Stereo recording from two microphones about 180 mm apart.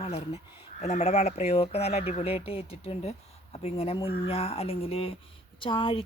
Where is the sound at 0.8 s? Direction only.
40° left (ahead or behind).